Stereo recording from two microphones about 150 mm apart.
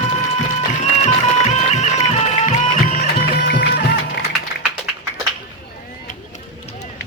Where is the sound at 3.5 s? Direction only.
90° left.